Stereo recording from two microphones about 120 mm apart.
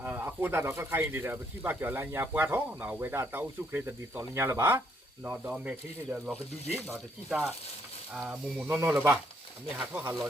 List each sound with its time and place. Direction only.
0.0 s speech: 15° right (ahead or behind)
6.9 s speech: centre (ahead or behind)